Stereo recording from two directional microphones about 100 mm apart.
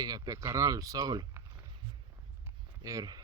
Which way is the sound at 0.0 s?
35° right (ahead or behind).